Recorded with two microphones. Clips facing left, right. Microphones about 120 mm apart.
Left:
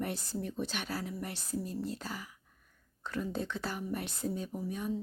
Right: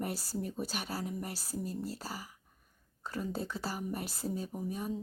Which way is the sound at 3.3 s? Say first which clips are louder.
Left 1 dB; 35° right (ahead or behind).